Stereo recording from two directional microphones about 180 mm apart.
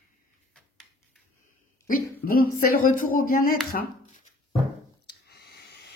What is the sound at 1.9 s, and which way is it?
Speech, 55° left (ahead or behind).